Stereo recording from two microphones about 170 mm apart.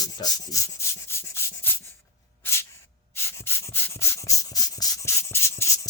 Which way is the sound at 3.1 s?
15° left (ahead or behind).